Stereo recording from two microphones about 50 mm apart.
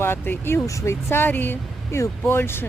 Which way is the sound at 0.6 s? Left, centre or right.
Left.